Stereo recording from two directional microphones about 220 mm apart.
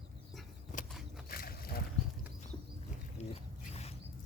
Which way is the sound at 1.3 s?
45° left (ahead or behind).